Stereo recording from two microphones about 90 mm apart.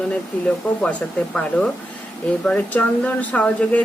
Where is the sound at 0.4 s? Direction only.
10° left (ahead or behind).